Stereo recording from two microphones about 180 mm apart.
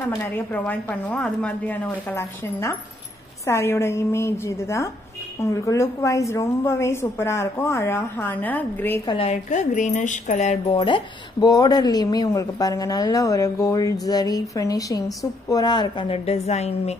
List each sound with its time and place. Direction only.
0.2 s a woman's voice: 10° left (ahead or behind)
9.0 s speech: 30° left (ahead or behind)